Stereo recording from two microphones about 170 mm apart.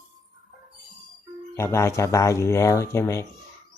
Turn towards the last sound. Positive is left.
turn(degrees=15)  # may be behind; listen again after turning